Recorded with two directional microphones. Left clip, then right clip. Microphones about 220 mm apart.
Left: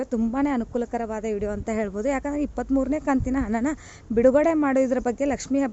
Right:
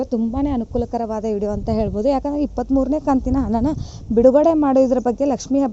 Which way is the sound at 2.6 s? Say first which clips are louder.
Right 5 dB; 25° left (ahead or behind).